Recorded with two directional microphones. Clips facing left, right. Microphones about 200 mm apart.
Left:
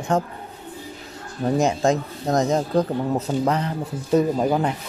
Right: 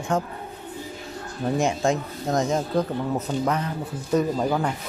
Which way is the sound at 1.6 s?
35° left (ahead or behind).